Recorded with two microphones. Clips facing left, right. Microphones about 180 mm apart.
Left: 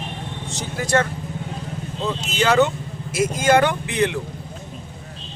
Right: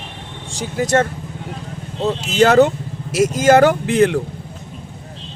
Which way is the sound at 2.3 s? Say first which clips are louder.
Right 6 dB; 40° right (ahead or behind).